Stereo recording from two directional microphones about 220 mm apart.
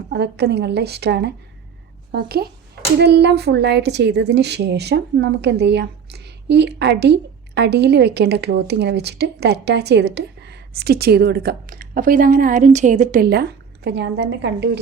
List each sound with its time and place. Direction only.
0.1 s a woman's voice: 50° right (ahead or behind)